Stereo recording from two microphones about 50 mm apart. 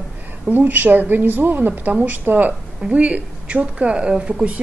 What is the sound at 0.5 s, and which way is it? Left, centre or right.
A woman's voice, right.